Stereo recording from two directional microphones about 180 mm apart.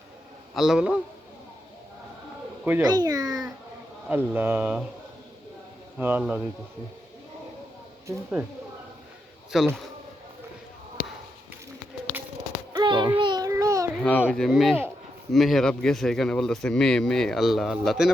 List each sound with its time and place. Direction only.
0.5 s speech: 5° right (ahead or behind)
2.8 s a child's voice: 20° right (ahead or behind)
4.3 s speech: 10° right (ahead or behind)
6.0 s speech: 10° right (ahead or behind)
8.0 s speech: 10° right (ahead or behind)
9.5 s speech: 5° right (ahead or behind)
12.7 s a sound: 25° right (ahead or behind)
14.0 s speech: 10° left (ahead or behind)